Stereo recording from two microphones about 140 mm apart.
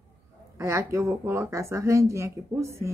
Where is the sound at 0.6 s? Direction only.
20° right (ahead or behind).